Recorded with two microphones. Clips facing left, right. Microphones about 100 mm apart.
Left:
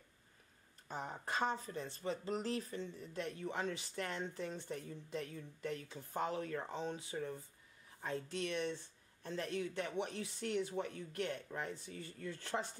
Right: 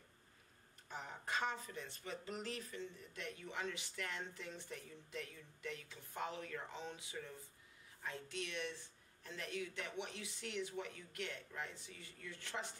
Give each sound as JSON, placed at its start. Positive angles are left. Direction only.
{"t": 0.8, "sound": "speech", "side_deg": 35}